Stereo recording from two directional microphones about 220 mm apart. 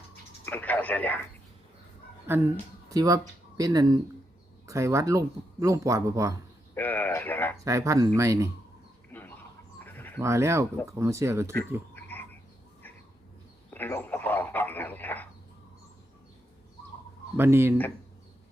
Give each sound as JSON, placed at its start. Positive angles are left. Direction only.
{"t": 0.4, "sound": "speech", "side_deg": 10}
{"t": 2.3, "sound": "speech", "side_deg": -10}
{"t": 6.7, "sound": "speech", "side_deg": 10}
{"t": 7.6, "sound": "speech", "side_deg": -15}
{"t": 9.1, "sound": "bird", "side_deg": 10}
{"t": 10.2, "sound": "speech", "side_deg": -15}
{"t": 11.9, "sound": "frog", "side_deg": 10}
{"t": 13.7, "sound": "a sound", "side_deg": 10}
{"t": 17.3, "sound": "speech", "side_deg": -10}